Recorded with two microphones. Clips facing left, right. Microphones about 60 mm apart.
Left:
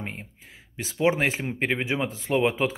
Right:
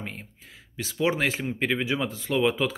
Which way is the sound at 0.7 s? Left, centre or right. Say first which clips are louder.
Left 2 dB; left.